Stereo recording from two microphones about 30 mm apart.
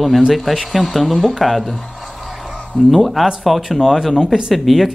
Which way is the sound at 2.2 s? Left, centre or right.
Centre.